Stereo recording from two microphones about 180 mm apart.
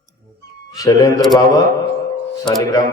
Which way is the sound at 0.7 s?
20° left (ahead or behind).